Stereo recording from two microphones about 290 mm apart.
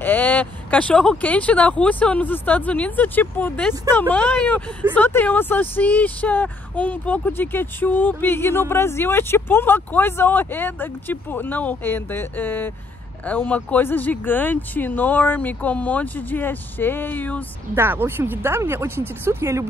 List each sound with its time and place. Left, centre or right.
0.0 s speech: centre
17.7 s speech: centre